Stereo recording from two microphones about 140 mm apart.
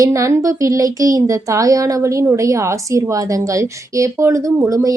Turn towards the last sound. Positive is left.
turn(degrees=-25)  # may be behind; listen again after turning